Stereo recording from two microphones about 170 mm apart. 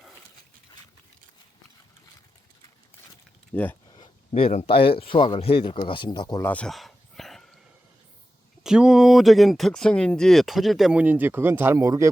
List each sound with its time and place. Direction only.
3.5 s speech: 10° left (ahead or behind)
3.9 s speech: 30° left (ahead or behind)
6.4 s bow-wow: 10° left (ahead or behind)
8.6 s speech: 5° right (ahead or behind)